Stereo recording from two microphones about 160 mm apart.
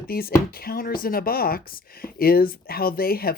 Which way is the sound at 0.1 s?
70° left (ahead or behind).